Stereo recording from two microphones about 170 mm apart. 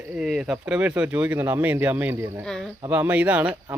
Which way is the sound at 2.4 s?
5° left (ahead or behind).